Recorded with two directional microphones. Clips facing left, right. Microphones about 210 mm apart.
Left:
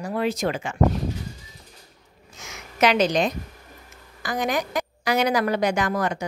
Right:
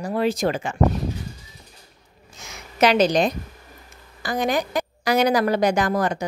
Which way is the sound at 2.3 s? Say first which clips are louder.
Right 2 dB; 35° right (ahead or behind).